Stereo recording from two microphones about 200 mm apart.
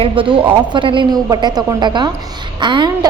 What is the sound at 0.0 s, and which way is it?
A woman's voice, 25° right (ahead or behind).